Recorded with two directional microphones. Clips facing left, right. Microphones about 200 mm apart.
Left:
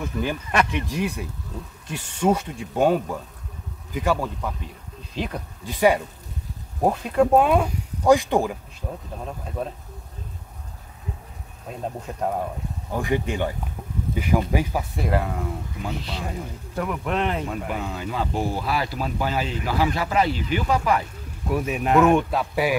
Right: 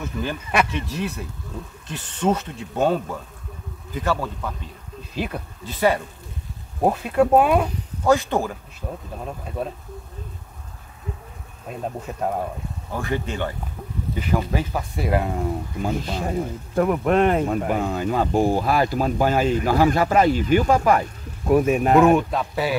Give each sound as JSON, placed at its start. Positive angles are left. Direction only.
{"t": 0.0, "sound": "speech", "side_deg": 15}
{"t": 5.1, "sound": "speech", "side_deg": -5}
{"t": 5.7, "sound": "speech", "side_deg": 15}
{"t": 6.8, "sound": "speech", "side_deg": -5}
{"t": 7.6, "sound": "speech", "side_deg": 15}
{"t": 12.1, "sound": "speech", "side_deg": -5}
{"t": 12.9, "sound": "speech", "side_deg": 15}
{"t": 15.0, "sound": "speech", "side_deg": -10}
{"t": 15.8, "sound": "speech", "side_deg": -45}
{"t": 22.3, "sound": "speech", "side_deg": 10}